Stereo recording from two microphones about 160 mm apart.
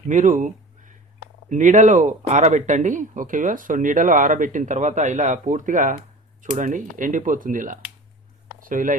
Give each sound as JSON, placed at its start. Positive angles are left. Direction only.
{"t": 0.1, "sound": "speech", "side_deg": -50}